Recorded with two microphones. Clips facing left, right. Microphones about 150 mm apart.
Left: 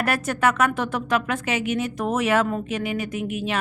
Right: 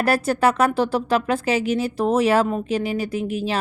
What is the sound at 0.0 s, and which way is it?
A woman's voice, 35° right (ahead or behind).